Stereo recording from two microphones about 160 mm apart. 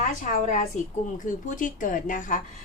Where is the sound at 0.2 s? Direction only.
55° left (ahead or behind).